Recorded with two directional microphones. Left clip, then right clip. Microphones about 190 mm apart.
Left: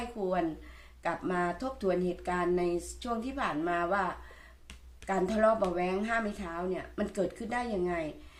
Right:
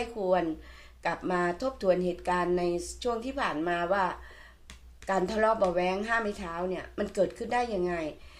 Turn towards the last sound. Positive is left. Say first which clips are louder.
# right 4 dB
turn(degrees=-35)  # may be behind; listen again after turning